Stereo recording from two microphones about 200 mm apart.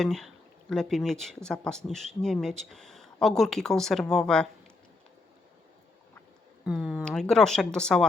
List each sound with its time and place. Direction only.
0.0 s speech: centre (ahead or behind)
6.7 s speech: 5° right (ahead or behind)